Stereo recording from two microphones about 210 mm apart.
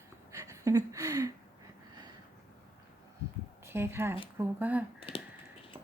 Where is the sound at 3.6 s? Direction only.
10° right (ahead or behind).